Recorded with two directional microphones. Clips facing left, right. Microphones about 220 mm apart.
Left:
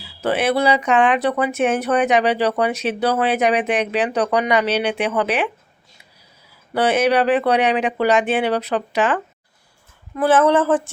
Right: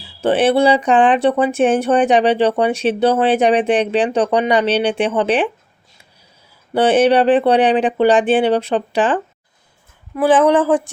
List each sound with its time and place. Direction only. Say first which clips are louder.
0.0 s speech: right 5 dB; 30° right (ahead or behind)
6.7 s speech: right 4 dB; 30° right (ahead or behind)
10.2 s speech: right 3 dB; 15° right (ahead or behind)